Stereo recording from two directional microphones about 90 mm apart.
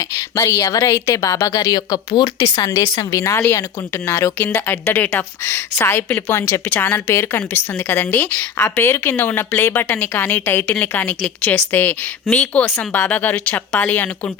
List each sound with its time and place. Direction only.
0.3 s a woman's voice: 35° left (ahead or behind)
4.4 s a woman's voice: 15° left (ahead or behind)
8.6 s a woman's voice: 30° left (ahead or behind)